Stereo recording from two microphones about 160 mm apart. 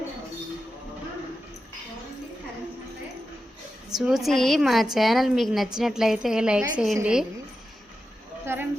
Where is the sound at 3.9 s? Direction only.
Centre (ahead or behind).